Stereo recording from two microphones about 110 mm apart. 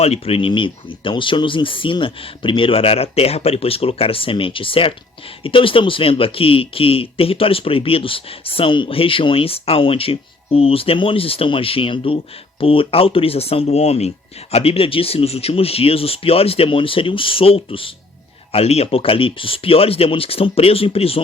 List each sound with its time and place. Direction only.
0.0 s speech: 65° left (ahead or behind)
14.5 s speech: 60° left (ahead or behind)
18.5 s speech: 70° left (ahead or behind)